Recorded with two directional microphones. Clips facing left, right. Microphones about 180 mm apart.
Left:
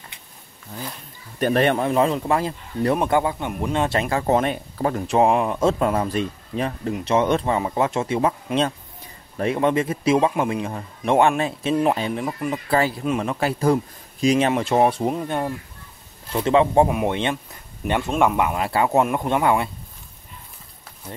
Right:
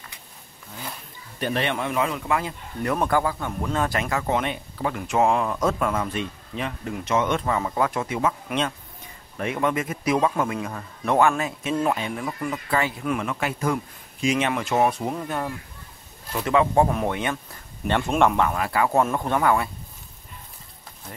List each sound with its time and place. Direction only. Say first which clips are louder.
1.4 s speech: left 7 dB; 45° left (ahead or behind)
1.9 s speech: left 5 dB; 30° left (ahead or behind)
3.0 s speech: left 2 dB; 20° left (ahead or behind); by 6.9 s 40° left (ahead or behind)
6.9 s speech: left 4 dB; 25° left (ahead or behind)
12.7 s speech: left 4 dB; 35° left (ahead or behind)
16.8 s speech: left 3 dB; 10° left (ahead or behind)
17.1 s speech: left 3 dB; 25° left (ahead or behind)
17.8 s speech: even; 10° left (ahead or behind)
18.6 s speech: left 4 dB; 25° left (ahead or behind)